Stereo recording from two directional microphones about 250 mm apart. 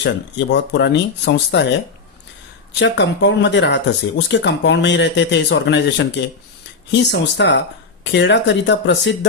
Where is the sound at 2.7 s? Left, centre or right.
Left.